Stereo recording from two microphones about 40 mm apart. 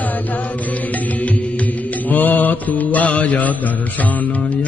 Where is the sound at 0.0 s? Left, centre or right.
Left.